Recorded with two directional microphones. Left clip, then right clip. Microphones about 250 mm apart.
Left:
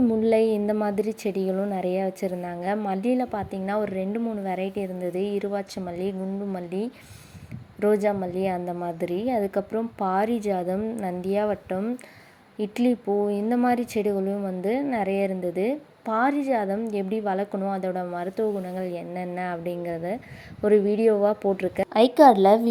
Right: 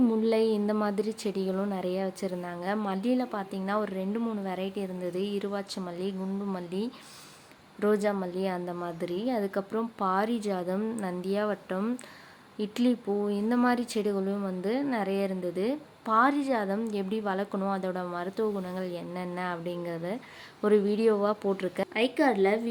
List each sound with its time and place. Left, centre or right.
0.2 s a woman's voice: centre
21.9 s a woman's voice: left